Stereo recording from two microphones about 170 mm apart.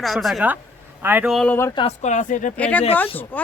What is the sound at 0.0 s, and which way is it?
Speech, centre (ahead or behind).